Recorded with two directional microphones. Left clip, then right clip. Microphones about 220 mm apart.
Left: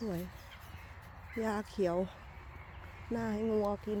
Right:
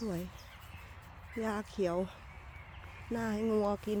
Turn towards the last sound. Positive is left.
turn(degrees=-20)  # may be behind; listen again after turning